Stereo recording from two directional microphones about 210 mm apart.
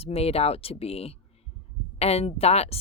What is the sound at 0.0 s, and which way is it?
Speech, 30° left (ahead or behind).